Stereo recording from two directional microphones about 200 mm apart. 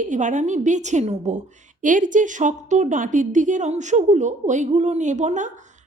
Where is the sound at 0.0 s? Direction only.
40° right (ahead or behind).